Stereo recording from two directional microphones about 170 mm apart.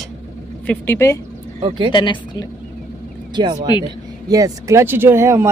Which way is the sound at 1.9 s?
25° left (ahead or behind).